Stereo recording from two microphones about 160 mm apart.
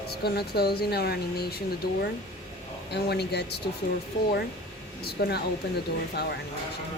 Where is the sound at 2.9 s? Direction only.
90° left.